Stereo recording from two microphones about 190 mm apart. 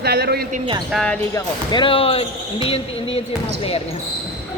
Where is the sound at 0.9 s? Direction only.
Centre (ahead or behind).